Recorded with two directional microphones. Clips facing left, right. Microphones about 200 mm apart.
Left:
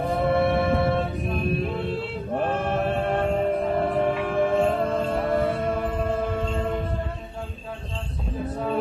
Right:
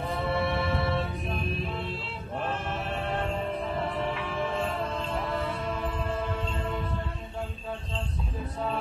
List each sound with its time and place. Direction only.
0.0 s music: 50° left (ahead or behind)